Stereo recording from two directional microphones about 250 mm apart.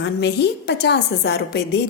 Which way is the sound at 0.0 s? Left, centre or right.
Left.